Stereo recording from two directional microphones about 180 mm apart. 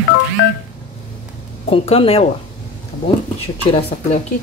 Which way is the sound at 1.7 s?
30° left (ahead or behind).